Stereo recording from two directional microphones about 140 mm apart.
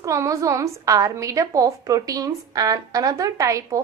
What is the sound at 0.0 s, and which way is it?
A woman's voice, 20° right (ahead or behind).